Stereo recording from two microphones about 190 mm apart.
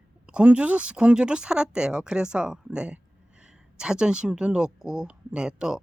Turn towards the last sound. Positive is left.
turn(degrees=-5)  # may be behind; listen again after turning